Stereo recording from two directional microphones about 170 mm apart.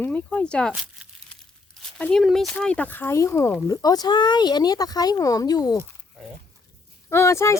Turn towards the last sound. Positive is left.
turn(degrees=15)  # may be behind; listen again after turning